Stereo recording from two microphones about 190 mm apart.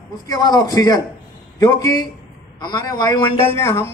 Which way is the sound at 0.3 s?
20° left (ahead or behind).